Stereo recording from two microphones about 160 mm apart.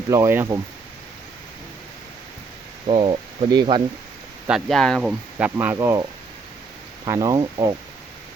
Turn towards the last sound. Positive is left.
turn(degrees=-25)  # may be behind; listen again after turning